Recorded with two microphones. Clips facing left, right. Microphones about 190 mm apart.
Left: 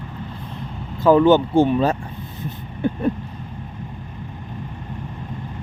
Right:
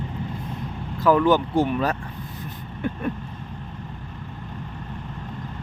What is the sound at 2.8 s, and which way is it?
Vehicle, 30° left (ahead or behind).